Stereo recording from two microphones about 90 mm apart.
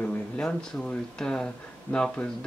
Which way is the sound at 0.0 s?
10° left (ahead or behind).